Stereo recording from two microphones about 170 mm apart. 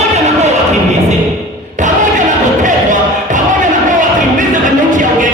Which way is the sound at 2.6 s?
45° right (ahead or behind).